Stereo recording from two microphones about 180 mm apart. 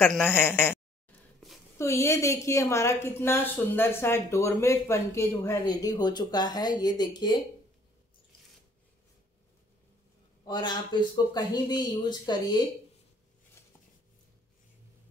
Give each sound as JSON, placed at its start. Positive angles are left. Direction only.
{"t": 0.0, "sound": "a woman's voice", "side_deg": 10}
{"t": 10.4, "sound": "speech", "side_deg": 25}